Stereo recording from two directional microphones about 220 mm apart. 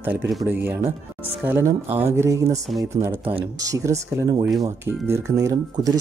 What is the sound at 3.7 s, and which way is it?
Speech, 15° right (ahead or behind).